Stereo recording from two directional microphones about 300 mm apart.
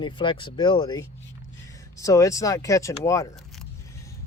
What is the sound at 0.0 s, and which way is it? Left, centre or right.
Speech, centre.